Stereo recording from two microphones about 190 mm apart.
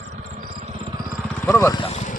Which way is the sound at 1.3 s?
5° left (ahead or behind).